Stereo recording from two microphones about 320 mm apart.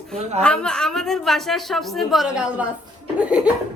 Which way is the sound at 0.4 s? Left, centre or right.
Centre.